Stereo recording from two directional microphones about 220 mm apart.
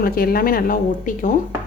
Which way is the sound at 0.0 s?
40° left (ahead or behind).